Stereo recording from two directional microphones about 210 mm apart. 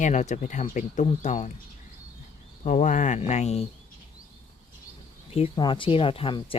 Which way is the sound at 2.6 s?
35° left (ahead or behind).